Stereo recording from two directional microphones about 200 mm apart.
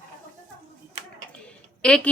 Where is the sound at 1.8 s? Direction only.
5° left (ahead or behind).